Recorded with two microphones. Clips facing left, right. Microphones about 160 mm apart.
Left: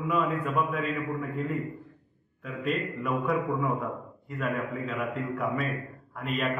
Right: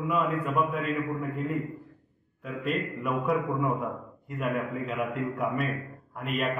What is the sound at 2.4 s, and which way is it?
A man's voice, 5° right (ahead or behind).